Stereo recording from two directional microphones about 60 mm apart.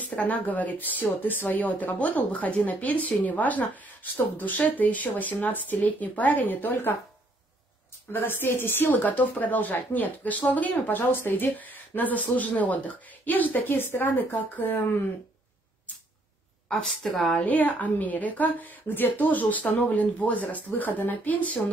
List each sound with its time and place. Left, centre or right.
0.1 s speech: left
8.1 s speech: left
16.8 s a woman's voice: centre
17.4 s speech: left